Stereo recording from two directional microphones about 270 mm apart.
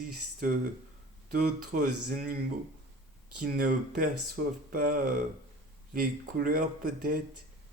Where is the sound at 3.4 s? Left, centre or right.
Right.